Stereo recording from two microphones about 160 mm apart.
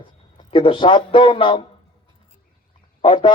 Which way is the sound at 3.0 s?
30° left (ahead or behind).